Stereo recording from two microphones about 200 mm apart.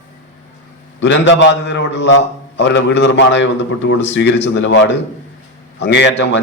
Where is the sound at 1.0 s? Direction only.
65° left (ahead or behind).